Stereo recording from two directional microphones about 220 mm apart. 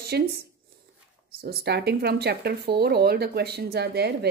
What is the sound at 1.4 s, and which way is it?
Speech, 50° right (ahead or behind).